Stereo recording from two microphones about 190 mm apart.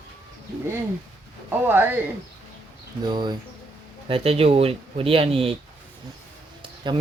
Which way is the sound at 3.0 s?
25° right (ahead or behind).